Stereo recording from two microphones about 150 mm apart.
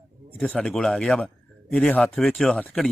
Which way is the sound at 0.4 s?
5° left (ahead or behind).